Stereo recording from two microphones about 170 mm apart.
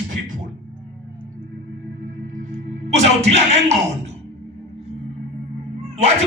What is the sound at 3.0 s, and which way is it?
Speech, 40° right (ahead or behind).